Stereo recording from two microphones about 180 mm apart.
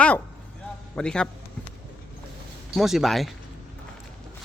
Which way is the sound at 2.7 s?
Centre (ahead or behind).